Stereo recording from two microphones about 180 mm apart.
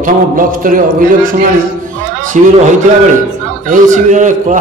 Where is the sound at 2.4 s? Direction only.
40° right (ahead or behind).